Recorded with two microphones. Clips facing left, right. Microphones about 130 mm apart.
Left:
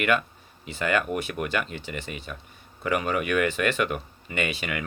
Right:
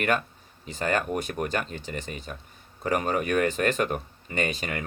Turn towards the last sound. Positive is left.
turn(degrees=-40)  # may be behind; listen again after turning